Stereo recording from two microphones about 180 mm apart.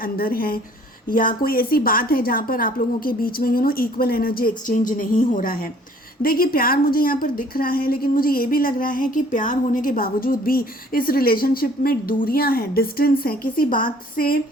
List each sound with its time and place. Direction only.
0.0 s a woman's voice: 55° left (ahead or behind)